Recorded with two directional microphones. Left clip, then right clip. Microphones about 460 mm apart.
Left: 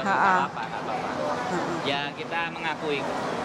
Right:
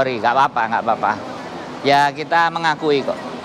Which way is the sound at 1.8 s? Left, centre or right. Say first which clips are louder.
Right 13 dB; right.